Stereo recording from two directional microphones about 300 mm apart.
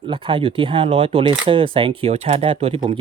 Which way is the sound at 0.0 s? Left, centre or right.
Centre.